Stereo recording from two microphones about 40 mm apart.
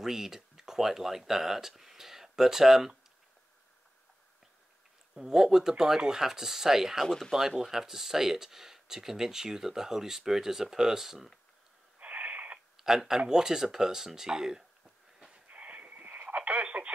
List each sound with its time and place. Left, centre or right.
0.0 s speech: centre
5.1 s speech: centre
7.1 s speech: centre
7.3 s speech: centre
12.0 s owl: right
12.7 s speech: centre
15.3 s radio: right